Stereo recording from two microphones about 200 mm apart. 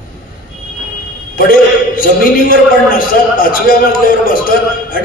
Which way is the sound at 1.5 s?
45° left (ahead or behind).